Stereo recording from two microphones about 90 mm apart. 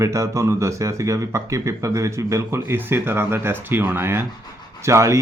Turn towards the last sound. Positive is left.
turn(degrees=-35)  # may be behind; listen again after turning